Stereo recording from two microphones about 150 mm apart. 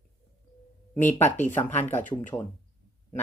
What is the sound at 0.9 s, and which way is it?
Speech, 15° left (ahead or behind).